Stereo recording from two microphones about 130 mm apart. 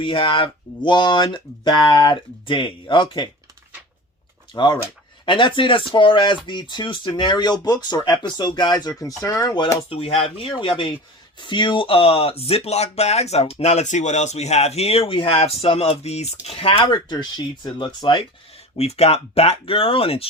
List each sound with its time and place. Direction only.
0.0 s speech: 40° left (ahead or behind)
4.5 s speech: 35° left (ahead or behind)
9.9 s speech: 50° left (ahead or behind)
18.8 s speech: 55° left (ahead or behind)